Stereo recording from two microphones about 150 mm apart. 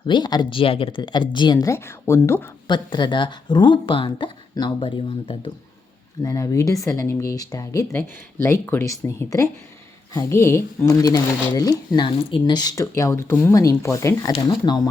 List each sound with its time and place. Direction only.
0.1 s speech: 30° left (ahead or behind)
2.6 s speech: 30° left (ahead or behind)
6.2 s a woman's voice: 20° left (ahead or behind)